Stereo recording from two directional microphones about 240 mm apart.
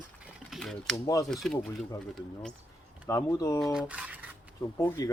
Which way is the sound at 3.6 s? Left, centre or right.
Centre.